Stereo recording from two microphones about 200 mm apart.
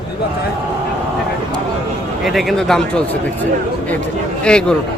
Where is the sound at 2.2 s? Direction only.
Centre (ahead or behind).